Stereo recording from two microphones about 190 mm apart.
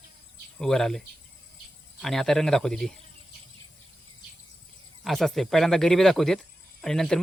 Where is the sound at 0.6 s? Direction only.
Centre (ahead or behind).